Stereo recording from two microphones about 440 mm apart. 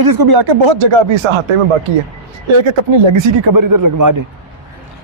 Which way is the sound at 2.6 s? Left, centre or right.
Right.